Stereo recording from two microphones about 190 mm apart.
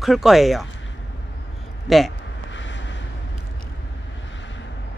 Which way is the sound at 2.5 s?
75° left (ahead or behind).